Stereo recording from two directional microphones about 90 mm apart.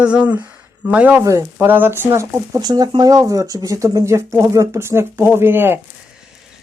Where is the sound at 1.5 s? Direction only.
20° right (ahead or behind).